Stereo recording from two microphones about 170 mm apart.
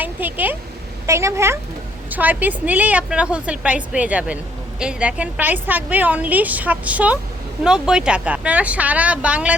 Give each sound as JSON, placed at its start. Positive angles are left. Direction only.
{"t": 0.0, "sound": "a woman's voice", "side_deg": -10}